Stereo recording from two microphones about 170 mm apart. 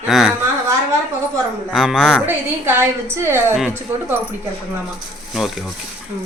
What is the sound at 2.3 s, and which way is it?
A woman's voice, 15° right (ahead or behind).